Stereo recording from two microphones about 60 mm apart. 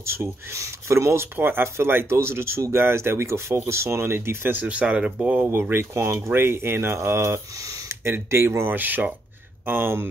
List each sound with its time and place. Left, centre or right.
0.0 s speech: right
1.3 s speech: right
4.6 s speech: right
5.5 s speech: right
8.7 s speech: right